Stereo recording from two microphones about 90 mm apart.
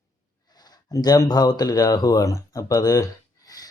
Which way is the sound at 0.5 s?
50° left (ahead or behind).